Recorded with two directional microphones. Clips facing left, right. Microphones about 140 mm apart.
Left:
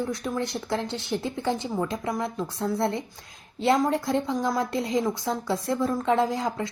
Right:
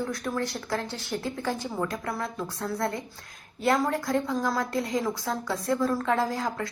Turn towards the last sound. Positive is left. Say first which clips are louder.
# left 2 dB
turn(degrees=20)  # may be behind; listen again after turning